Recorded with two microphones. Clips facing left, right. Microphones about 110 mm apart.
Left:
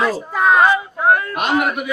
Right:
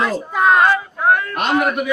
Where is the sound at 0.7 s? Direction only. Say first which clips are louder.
Left 1 dB; 15° left (ahead or behind).